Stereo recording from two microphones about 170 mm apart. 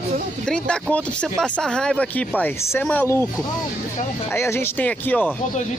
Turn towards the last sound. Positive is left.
turn(degrees=10)  # may be behind; listen again after turning